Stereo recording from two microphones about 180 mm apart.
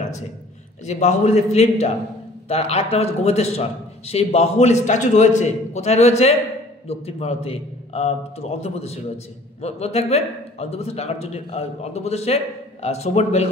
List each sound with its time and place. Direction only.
0.8 s a man's voice: 40° left (ahead or behind)